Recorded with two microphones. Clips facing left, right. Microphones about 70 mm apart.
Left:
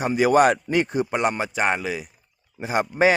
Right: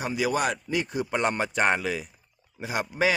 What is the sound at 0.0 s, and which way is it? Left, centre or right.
Speech, left.